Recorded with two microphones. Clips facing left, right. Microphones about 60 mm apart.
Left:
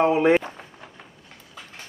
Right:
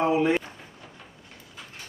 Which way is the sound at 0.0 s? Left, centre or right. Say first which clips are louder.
Left 4 dB; left.